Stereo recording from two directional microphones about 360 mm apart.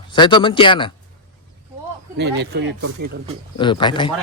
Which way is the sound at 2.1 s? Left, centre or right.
Right.